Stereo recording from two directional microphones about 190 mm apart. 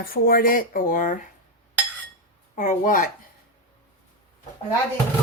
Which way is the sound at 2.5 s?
40° left (ahead or behind).